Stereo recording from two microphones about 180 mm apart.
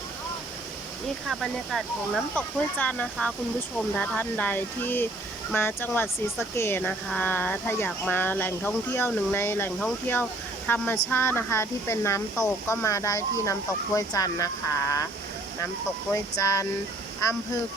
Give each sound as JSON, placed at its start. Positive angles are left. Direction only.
{"t": 1.3, "sound": "speech", "side_deg": 0}
{"t": 16.1, "sound": "speech", "side_deg": 20}